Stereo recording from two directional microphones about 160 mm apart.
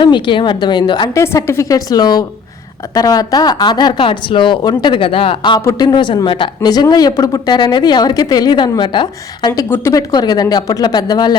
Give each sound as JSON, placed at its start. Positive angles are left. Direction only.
{"t": 0.0, "sound": "speech", "side_deg": 30}